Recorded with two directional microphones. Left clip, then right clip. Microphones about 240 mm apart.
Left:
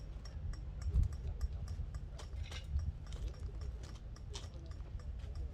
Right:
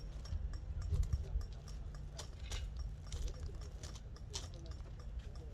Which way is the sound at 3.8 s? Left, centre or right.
Right.